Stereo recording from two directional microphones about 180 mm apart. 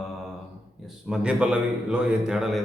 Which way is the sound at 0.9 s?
5° right (ahead or behind).